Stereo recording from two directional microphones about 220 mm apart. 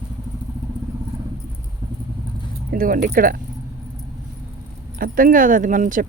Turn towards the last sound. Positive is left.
turn(degrees=-35)  # may be behind; listen again after turning